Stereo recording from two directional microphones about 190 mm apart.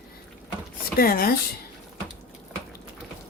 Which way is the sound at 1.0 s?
50° left (ahead or behind).